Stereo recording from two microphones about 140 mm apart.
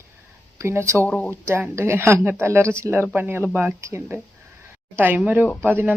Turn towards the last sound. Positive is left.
turn(degrees=-15)  # may be behind; listen again after turning